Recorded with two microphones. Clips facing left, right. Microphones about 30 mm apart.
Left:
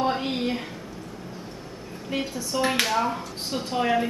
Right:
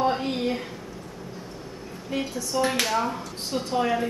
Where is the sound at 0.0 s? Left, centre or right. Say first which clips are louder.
Right 1 dB; centre.